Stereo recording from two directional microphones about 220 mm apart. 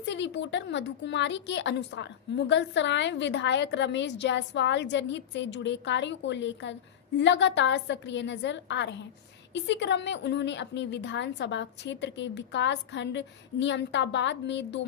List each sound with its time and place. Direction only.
0.0 s a woman's voice: 55° left (ahead or behind)